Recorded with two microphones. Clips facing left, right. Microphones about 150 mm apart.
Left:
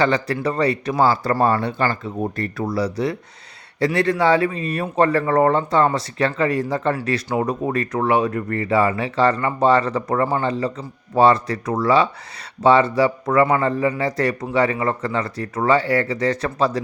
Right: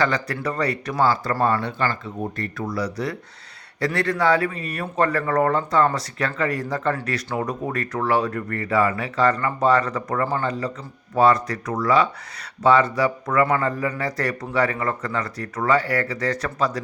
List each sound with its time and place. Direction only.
0.0 s speech: 25° left (ahead or behind)